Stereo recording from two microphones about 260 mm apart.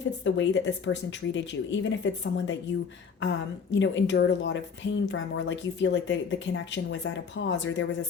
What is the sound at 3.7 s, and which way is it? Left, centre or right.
Speech, left.